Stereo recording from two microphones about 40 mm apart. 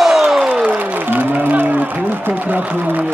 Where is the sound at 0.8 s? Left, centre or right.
Right.